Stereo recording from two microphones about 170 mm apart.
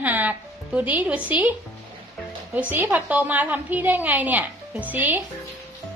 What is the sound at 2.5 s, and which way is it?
A woman's voice, 10° right (ahead or behind).